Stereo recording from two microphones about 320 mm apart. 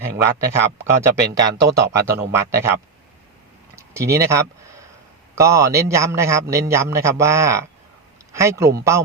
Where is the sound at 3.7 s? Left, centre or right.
Centre.